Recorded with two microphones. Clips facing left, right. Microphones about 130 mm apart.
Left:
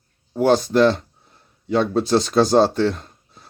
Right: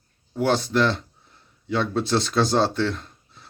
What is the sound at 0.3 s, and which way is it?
Speech, 40° left (ahead or behind).